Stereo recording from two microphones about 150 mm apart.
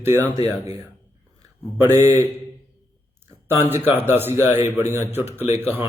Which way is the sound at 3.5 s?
15° right (ahead or behind).